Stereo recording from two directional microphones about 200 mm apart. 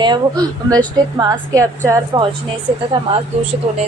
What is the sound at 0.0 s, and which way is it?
A woman's voice, 20° right (ahead or behind).